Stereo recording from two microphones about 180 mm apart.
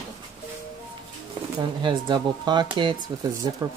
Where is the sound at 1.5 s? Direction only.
25° right (ahead or behind).